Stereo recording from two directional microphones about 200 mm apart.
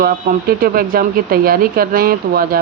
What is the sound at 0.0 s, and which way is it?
A woman's voice, 50° right (ahead or behind).